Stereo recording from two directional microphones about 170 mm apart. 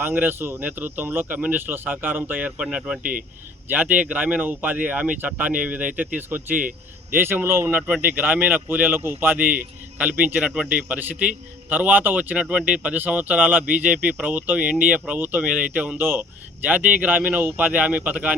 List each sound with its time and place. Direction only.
0.0 s speech: 10° right (ahead or behind)
3.0 s speech: 55° right (ahead or behind)
3.7 s speech: 10° right (ahead or behind)